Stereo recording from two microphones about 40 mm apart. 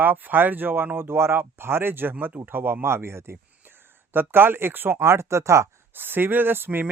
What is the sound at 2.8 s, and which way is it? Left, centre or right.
Speech, right.